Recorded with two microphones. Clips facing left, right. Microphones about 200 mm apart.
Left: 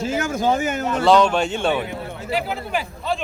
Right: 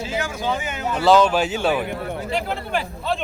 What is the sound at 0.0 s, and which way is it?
Speech, 45° left (ahead or behind).